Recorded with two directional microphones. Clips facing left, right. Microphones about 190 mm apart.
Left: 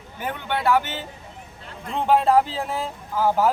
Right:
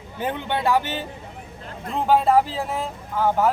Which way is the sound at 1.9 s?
Centre (ahead or behind).